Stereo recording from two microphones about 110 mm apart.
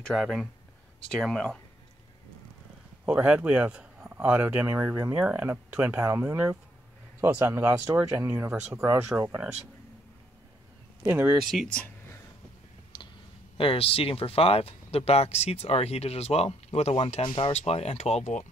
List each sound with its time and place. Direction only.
0.0 s speech: 5° left (ahead or behind)
3.1 s speech: 15° right (ahead or behind); by 8.3 s 30° right (ahead or behind)
8.3 s speech: 15° right (ahead or behind)
11.1 s speech: 15° right (ahead or behind)
11.5 s speech: centre (ahead or behind)
13.6 s speech: 60° left (ahead or behind); by 18.4 s 85° left